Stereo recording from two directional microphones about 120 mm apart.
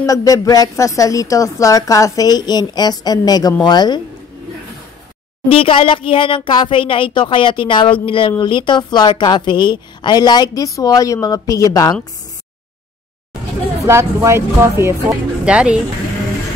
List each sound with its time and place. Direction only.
0.0 s speech: 30° left (ahead or behind)
5.5 s speech: 50° left (ahead or behind); by 12.0 s 30° left (ahead or behind)
13.8 s speech: 20° right (ahead or behind)
15.4 s speech: 10° right (ahead or behind)